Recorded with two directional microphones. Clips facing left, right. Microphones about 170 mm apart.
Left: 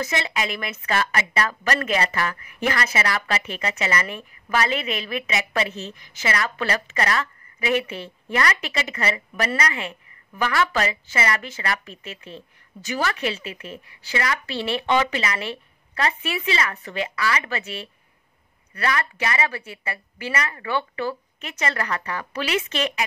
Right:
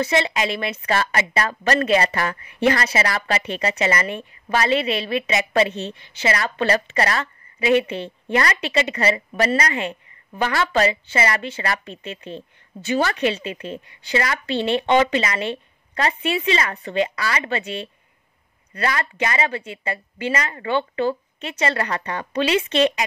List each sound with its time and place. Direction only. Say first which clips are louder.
0.0 s a woman's voice: right 5 dB; 30° right (ahead or behind)